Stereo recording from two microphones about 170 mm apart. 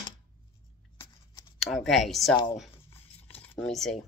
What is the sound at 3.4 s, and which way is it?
Speech, 10° left (ahead or behind).